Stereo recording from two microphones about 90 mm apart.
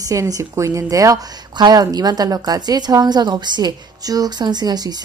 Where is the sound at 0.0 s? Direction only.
40° right (ahead or behind).